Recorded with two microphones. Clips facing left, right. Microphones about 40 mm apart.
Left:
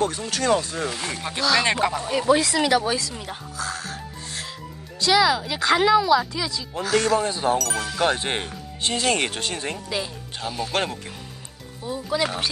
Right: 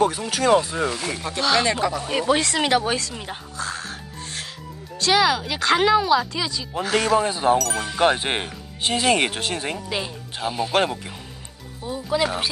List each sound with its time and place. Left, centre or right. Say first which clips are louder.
0.3 s speech: right 3 dB; centre
0.9 s speech: right 2 dB; centre
1.6 s speech: even; left
2.0 s speech: left 2 dB; right
4.9 s speech: even; right
6.8 s speech: right 1 dB; right
7.5 s speech: right 2 dB; centre
7.8 s speech: right 3 dB; right
9.6 s speech: right 1 dB; right
10.7 s speech: right 6 dB; centre